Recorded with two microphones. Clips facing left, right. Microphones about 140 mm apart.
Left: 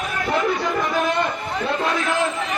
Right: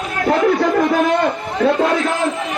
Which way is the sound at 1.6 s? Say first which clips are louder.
Right 8 dB; 60° right (ahead or behind).